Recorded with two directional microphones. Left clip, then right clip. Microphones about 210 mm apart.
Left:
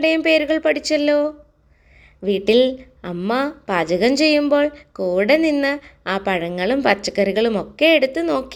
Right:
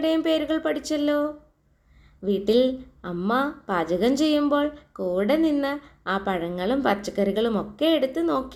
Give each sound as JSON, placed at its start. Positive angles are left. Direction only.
{"t": 0.3, "sound": "a woman's voice", "side_deg": 15}
{"t": 2.4, "sound": "a woman's voice", "side_deg": 15}